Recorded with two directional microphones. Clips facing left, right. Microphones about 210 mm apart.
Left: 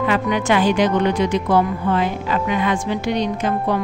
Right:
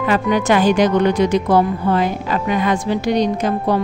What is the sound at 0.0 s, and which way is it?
Speech, 40° right (ahead or behind).